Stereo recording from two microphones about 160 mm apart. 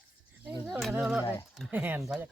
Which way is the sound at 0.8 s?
5° right (ahead or behind).